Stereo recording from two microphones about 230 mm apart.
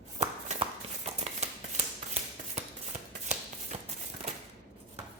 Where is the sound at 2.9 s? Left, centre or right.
Right.